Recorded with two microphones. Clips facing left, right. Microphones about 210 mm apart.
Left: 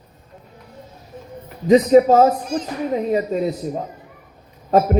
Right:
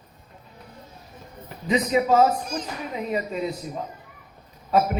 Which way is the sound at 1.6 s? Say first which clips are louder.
Left 10 dB; 40° left (ahead or behind).